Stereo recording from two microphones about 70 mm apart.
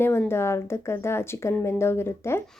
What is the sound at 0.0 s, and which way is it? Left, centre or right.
Speech, left.